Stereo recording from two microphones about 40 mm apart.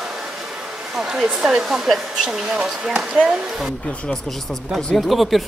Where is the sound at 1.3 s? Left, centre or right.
Centre.